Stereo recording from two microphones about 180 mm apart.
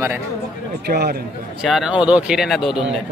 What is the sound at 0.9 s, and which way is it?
Speech, 55° right (ahead or behind).